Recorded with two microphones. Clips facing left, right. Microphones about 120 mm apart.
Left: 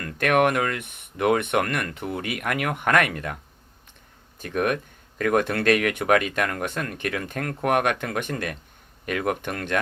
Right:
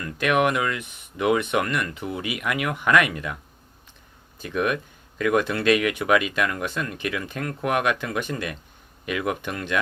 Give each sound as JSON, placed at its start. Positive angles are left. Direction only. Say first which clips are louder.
{"t": 0.0, "sound": "speech", "louder": "left 1 dB", "side_deg": 50}
{"t": 4.4, "sound": "speech", "louder": "even", "side_deg": 50}